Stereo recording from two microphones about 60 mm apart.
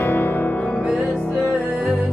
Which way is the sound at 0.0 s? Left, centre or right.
Left.